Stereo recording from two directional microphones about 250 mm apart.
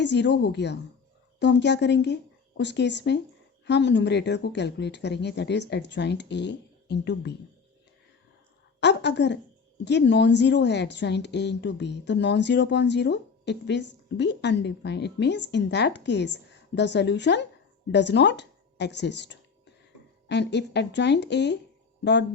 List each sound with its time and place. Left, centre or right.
0.0 s speech: left
8.8 s a sound: left
9.8 s speech: left